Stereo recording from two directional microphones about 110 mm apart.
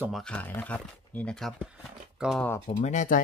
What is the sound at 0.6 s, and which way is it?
Speech, 15° left (ahead or behind).